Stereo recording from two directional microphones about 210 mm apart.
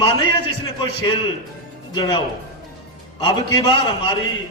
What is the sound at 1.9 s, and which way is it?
A man's voice, 20° left (ahead or behind).